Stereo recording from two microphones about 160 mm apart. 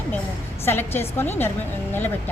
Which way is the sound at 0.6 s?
15° left (ahead or behind).